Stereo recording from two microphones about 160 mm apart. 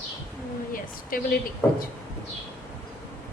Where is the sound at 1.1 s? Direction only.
60° left (ahead or behind).